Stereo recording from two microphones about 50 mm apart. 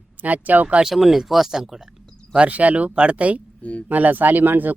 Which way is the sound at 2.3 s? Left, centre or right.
Right.